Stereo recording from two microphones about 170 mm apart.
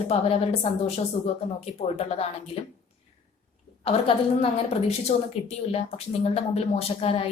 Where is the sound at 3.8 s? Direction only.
35° left (ahead or behind).